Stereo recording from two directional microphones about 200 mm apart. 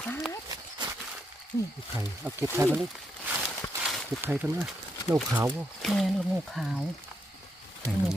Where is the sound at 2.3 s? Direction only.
10° right (ahead or behind).